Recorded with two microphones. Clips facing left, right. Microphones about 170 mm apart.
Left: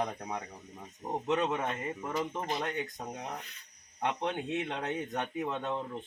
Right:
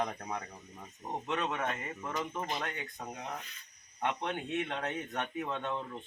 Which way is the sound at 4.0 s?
20° left (ahead or behind).